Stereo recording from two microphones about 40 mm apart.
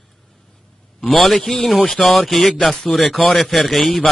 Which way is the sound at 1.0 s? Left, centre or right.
Centre.